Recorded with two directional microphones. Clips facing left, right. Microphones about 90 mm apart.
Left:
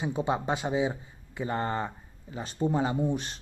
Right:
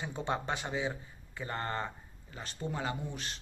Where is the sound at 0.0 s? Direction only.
10° left (ahead or behind).